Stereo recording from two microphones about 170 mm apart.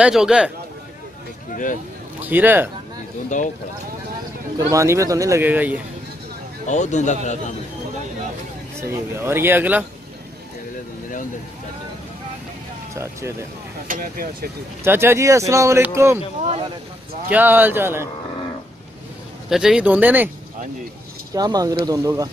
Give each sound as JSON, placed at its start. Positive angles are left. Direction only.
{"t": 0.0, "sound": "a man's voice", "side_deg": -5}
{"t": 2.2, "sound": "speech", "side_deg": -10}
{"t": 3.3, "sound": "speech", "side_deg": 45}
{"t": 4.6, "sound": "speech", "side_deg": -20}
{"t": 6.7, "sound": "a man's voice", "side_deg": 45}
{"t": 8.8, "sound": "speech", "side_deg": -15}
{"t": 12.9, "sound": "speech", "side_deg": -15}
{"t": 13.8, "sound": "speech", "side_deg": -55}
{"t": 14.8, "sound": "speech", "side_deg": -15}
{"t": 17.3, "sound": "speech", "side_deg": -10}
{"t": 19.5, "sound": "speech", "side_deg": -5}
{"t": 21.3, "sound": "speech", "side_deg": -20}